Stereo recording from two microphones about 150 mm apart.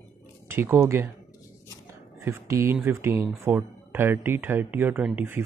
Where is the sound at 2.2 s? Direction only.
20° right (ahead or behind).